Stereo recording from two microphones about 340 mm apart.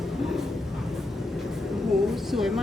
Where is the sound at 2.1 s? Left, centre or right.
Centre.